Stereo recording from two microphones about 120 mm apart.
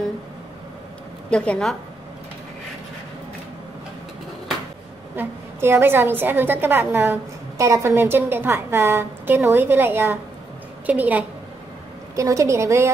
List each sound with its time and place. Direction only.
1.3 s a woman's voice: 10° left (ahead or behind)
5.1 s a woman's voice: 20° right (ahead or behind)
12.2 s a woman's voice: 25° right (ahead or behind)